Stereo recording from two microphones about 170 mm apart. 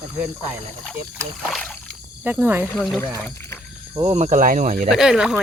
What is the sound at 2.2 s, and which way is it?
Speech, 10° right (ahead or behind).